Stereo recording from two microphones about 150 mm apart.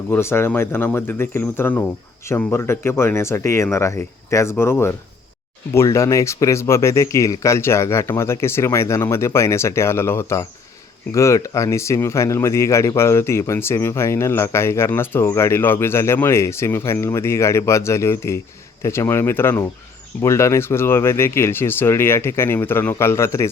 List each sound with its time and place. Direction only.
0.1 s speech: 15° left (ahead or behind)